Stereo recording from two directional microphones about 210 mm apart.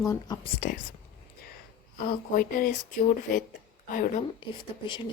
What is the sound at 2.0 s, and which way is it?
Speech, 45° left (ahead or behind).